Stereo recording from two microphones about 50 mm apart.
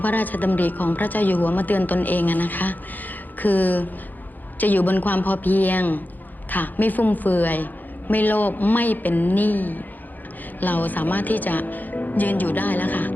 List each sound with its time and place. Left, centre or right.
0.0 s a woman's voice: left